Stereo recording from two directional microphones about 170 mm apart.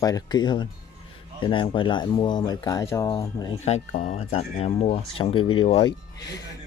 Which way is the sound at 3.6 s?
45° left (ahead or behind).